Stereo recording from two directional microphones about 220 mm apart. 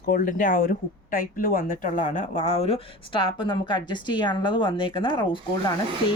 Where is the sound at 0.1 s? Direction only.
35° left (ahead or behind).